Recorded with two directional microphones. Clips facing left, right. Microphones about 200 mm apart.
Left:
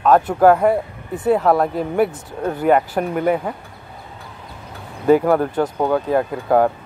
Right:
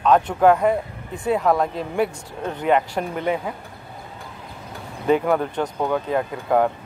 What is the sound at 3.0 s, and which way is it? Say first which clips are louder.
Speech: left 5 dB; 45° left (ahead or behind).